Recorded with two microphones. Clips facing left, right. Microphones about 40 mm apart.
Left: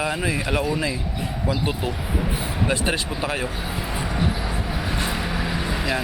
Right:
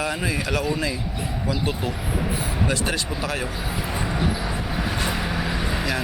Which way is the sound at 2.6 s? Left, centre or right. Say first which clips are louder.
Left 3 dB; left.